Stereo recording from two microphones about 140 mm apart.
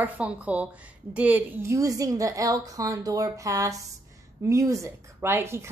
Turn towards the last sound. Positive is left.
turn(degrees=-20)  # may be behind; listen again after turning